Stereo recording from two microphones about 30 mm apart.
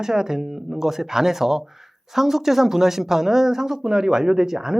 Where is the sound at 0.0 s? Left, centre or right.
Centre.